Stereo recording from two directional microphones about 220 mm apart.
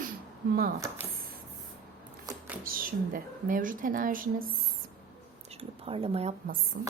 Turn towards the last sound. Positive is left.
turn(degrees=-45)  # may be behind; listen again after turning